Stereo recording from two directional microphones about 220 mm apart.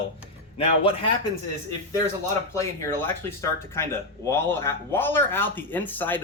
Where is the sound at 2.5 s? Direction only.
15° left (ahead or behind).